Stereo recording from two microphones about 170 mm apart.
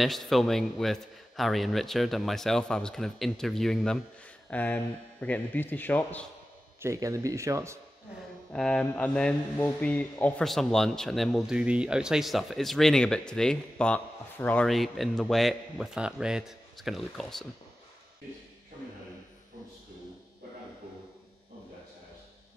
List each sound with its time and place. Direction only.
0.0 s a man's voice: centre (ahead or behind)
6.8 s speech: 15° right (ahead or behind)
8.5 s speech: 5° left (ahead or behind)